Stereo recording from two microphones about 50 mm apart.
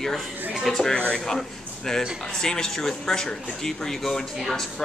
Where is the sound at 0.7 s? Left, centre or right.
Centre.